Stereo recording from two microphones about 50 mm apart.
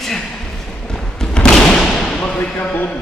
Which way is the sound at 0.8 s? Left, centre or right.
Centre.